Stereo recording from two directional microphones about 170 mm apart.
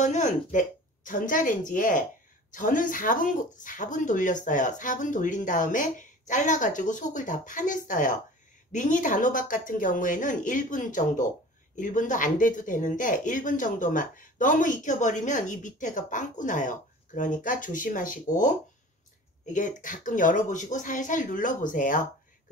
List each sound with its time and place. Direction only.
0.0 s speech: 45° left (ahead or behind)